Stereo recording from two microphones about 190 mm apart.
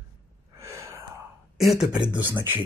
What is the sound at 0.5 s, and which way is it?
Gasp, 15° right (ahead or behind).